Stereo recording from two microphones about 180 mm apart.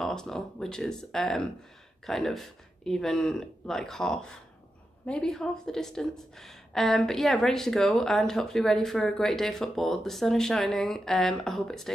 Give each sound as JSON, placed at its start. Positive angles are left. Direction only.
{"t": 0.0, "sound": "speech", "side_deg": 5}